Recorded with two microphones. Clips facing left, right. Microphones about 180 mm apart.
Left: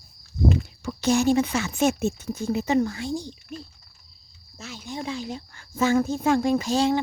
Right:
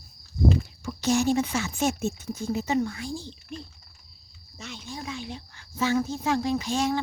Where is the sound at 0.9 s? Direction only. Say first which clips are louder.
Left 3 dB; 60° left (ahead or behind).